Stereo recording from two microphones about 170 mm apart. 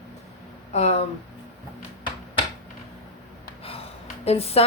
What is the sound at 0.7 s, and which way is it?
Speech, 40° left (ahead or behind).